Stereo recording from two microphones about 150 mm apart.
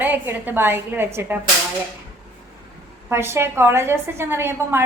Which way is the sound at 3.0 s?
15° right (ahead or behind).